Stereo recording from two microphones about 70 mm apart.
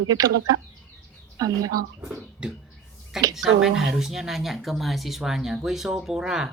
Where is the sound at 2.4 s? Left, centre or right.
Centre.